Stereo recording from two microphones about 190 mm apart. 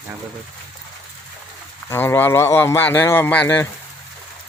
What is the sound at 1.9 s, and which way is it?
Speech, 10° left (ahead or behind).